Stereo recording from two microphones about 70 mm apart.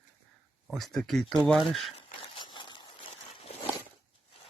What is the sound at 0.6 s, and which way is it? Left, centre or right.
Speech, centre.